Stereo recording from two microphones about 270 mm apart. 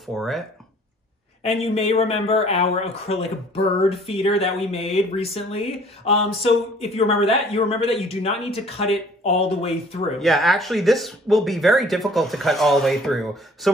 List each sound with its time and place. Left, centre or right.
0.0 s speech: centre
1.6 s speech: left
10.1 s speech: centre